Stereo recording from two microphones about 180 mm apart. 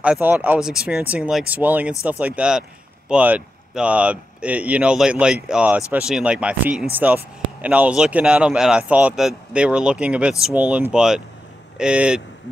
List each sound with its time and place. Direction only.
0.0 s speech: 10° right (ahead or behind)